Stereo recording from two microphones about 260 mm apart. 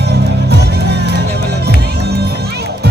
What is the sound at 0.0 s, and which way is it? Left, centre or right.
Music, right.